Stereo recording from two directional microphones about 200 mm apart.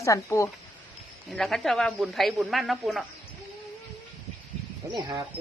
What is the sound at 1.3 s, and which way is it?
Speech, centre (ahead or behind).